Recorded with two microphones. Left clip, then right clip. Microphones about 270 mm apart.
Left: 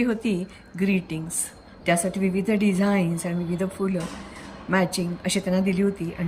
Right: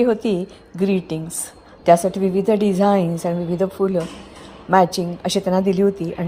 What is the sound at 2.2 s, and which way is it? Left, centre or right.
Speech, right.